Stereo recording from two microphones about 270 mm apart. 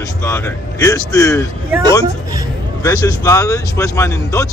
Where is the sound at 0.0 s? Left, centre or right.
Centre.